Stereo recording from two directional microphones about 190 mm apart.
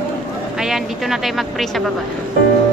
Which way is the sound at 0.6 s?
Centre (ahead or behind).